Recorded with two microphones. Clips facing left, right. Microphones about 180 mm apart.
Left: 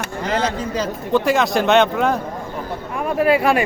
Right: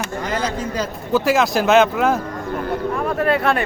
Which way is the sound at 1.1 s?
Centre (ahead or behind).